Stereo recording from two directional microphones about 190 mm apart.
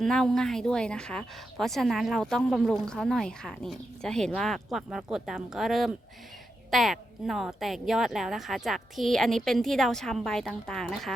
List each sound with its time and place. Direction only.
0.0 s a woman's voice: 5° left (ahead or behind)